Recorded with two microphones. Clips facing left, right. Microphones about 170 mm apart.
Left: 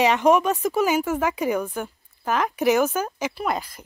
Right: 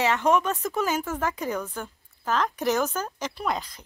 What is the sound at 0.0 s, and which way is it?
A woman's voice, 15° left (ahead or behind).